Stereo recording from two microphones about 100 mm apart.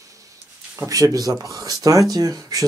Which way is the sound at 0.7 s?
35° right (ahead or behind).